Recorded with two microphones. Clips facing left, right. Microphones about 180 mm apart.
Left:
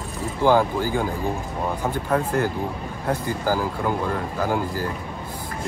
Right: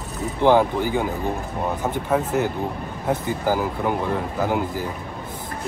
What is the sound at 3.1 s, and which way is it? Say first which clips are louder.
Speech: right 1 dB; 20° right (ahead or behind).